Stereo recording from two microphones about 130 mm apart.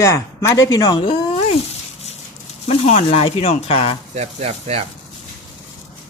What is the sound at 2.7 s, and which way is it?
Speech, 50° left (ahead or behind).